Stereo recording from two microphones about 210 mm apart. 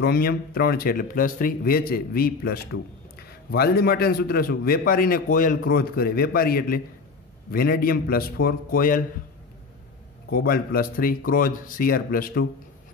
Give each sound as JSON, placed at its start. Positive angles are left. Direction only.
{"t": 0.0, "sound": "a man's voice", "side_deg": 45}
{"t": 10.3, "sound": "a man's voice", "side_deg": 45}